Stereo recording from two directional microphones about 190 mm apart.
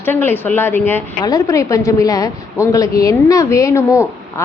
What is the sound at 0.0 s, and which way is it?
A woman's voice, 10° left (ahead or behind).